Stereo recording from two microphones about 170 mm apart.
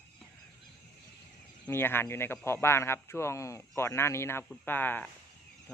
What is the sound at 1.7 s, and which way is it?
Speech, 15° left (ahead or behind).